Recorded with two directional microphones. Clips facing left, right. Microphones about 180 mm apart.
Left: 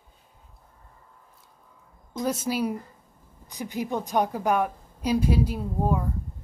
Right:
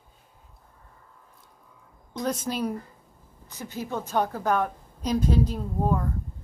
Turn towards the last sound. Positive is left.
turn(degrees=10)  # may be behind; listen again after turning